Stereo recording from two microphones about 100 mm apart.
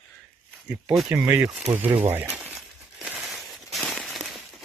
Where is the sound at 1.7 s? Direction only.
20° right (ahead or behind).